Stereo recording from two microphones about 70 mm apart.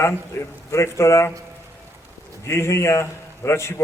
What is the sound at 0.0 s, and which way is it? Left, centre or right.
A man's voice, left.